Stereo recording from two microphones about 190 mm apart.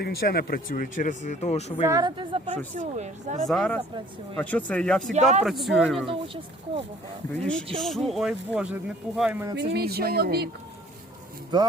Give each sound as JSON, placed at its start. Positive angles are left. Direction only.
{"t": 0.0, "sound": "speech", "side_deg": 55}
{"t": 1.9, "sound": "speech", "side_deg": -20}
{"t": 2.7, "sound": "speech", "side_deg": -40}
{"t": 3.4, "sound": "speech", "side_deg": 5}
{"t": 5.1, "sound": "speech", "side_deg": -35}
{"t": 5.4, "sound": "speech", "side_deg": 0}
{"t": 6.1, "sound": "speech", "side_deg": -30}
{"t": 7.8, "sound": "speech", "side_deg": 0}
{"t": 9.6, "sound": "speech", "side_deg": -55}
{"t": 11.5, "sound": "speech", "side_deg": -20}